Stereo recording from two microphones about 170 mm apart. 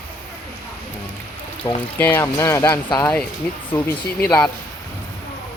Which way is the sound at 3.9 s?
10° left (ahead or behind).